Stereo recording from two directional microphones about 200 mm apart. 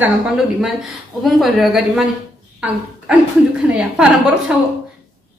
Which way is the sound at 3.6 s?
5° right (ahead or behind).